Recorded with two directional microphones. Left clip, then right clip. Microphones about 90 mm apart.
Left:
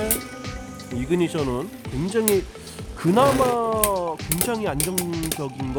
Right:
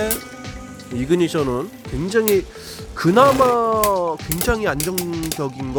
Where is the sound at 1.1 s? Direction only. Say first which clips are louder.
Right 5 dB; 40° right (ahead or behind).